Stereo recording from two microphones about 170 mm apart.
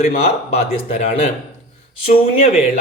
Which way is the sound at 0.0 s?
40° left (ahead or behind).